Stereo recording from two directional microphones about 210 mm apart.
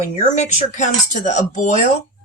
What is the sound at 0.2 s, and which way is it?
Speech, 35° left (ahead or behind).